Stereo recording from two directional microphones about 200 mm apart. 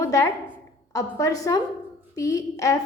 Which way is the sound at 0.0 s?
15° left (ahead or behind).